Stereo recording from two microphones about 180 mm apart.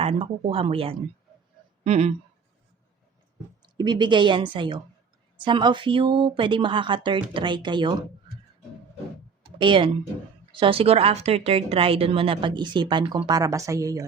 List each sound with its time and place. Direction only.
0.0 s speech: 35° right (ahead or behind)
3.8 s a woman's voice: 25° right (ahead or behind)
9.6 s a woman's voice: 25° right (ahead or behind)